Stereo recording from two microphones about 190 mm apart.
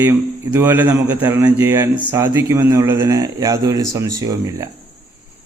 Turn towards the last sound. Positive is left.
turn(degrees=-20)  # may be behind; listen again after turning